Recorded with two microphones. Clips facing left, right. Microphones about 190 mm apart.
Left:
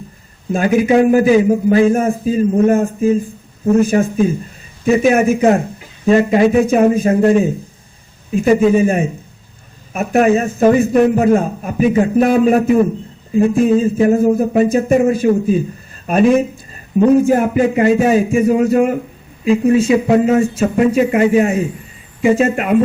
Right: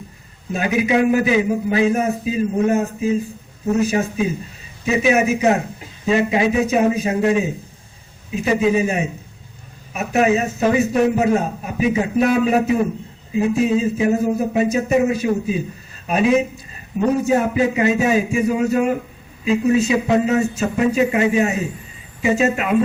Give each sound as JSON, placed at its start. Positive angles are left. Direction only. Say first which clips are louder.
{"t": 0.5, "sound": "a man's voice", "louder": "left 6 dB", "side_deg": 45}